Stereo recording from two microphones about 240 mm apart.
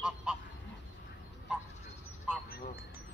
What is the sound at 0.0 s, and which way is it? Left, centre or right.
Goose, centre.